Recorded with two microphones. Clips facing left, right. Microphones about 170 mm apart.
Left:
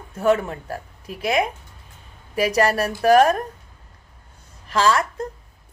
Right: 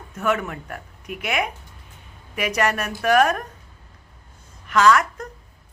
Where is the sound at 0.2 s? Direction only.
30° left (ahead or behind).